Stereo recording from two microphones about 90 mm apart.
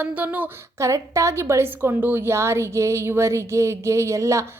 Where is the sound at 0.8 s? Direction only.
35° right (ahead or behind).